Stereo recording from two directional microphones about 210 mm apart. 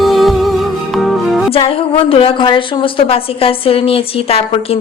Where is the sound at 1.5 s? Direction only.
25° left (ahead or behind).